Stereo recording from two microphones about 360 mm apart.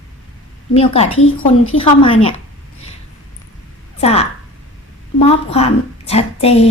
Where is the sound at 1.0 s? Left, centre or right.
Left.